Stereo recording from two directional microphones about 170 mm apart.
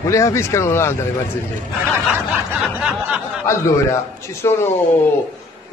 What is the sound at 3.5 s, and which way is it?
Speech, 15° left (ahead or behind).